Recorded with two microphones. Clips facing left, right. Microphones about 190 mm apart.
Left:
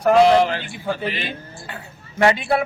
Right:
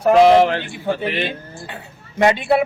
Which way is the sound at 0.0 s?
20° right (ahead or behind).